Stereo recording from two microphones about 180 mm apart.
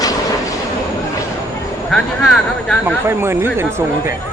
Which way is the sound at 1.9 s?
5° left (ahead or behind).